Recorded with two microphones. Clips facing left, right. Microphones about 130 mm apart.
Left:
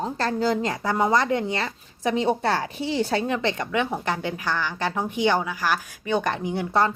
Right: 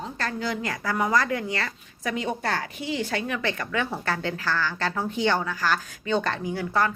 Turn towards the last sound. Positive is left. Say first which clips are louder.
# left 3 dB
turn(degrees=25)  # may be behind; listen again after turning